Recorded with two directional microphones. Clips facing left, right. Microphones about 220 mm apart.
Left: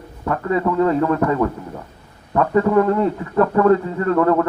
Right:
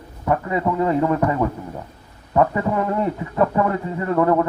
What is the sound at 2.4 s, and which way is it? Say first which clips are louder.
A man's voice: left 4 dB; 20° right (ahead or behind).